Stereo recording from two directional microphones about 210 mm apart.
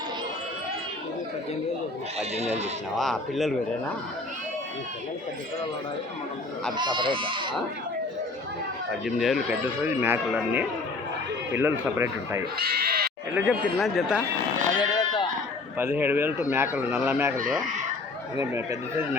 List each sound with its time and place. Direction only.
2.1 s speech: 30° right (ahead or behind)
3.0 s speech: centre (ahead or behind)
6.7 s speech: 20° right (ahead or behind)
9.0 s speech: centre (ahead or behind)
12.5 s bleat: 45° right (ahead or behind)
13.3 s speech: centre (ahead or behind)
14.8 s sheep: 20° left (ahead or behind)
15.8 s speech: 10° right (ahead or behind)
18.3 s speech: 15° right (ahead or behind)